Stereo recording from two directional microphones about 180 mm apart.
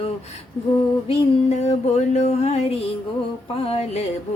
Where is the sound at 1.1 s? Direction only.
35° left (ahead or behind).